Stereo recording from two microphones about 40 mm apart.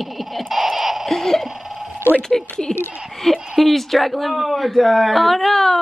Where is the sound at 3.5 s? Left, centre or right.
Centre.